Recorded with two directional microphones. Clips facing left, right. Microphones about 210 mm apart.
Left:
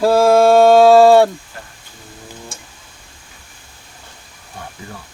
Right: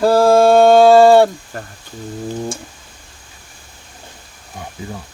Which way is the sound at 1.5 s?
45° right (ahead or behind).